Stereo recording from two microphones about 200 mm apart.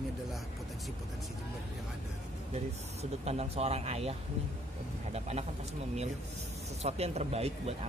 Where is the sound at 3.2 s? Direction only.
30° right (ahead or behind).